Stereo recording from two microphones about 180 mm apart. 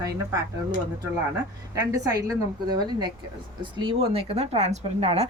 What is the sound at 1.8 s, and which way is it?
A woman's voice, 20° right (ahead or behind).